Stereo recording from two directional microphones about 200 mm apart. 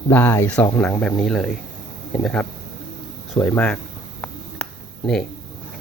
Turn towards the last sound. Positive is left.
turn(degrees=5)  # may be behind; listen again after turning